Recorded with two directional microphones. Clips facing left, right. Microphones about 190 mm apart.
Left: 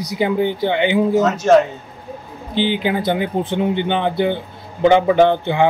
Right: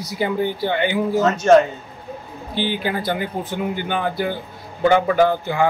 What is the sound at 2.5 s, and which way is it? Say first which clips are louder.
A man's voice: left 4 dB; 20° left (ahead or behind).